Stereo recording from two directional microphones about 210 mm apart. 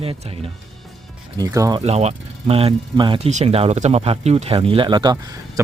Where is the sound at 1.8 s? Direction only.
30° right (ahead or behind).